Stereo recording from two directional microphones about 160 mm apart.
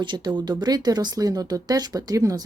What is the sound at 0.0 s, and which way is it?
Speech, 30° right (ahead or behind).